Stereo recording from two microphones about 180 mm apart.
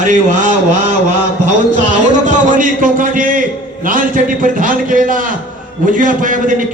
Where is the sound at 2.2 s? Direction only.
45° right (ahead or behind).